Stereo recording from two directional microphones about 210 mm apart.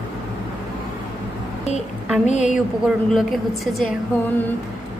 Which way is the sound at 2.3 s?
35° left (ahead or behind).